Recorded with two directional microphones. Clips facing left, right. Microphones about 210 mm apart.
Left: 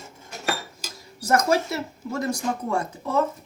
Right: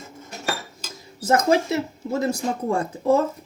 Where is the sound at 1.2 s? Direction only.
20° right (ahead or behind).